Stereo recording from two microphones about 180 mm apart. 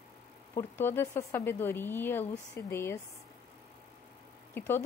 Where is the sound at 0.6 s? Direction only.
10° left (ahead or behind).